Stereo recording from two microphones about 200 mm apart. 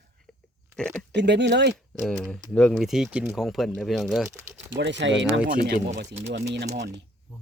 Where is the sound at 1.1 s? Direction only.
60° right (ahead or behind).